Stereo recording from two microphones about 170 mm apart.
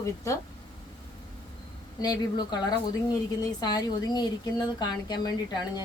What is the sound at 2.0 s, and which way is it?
A woman's voice, 25° left (ahead or behind).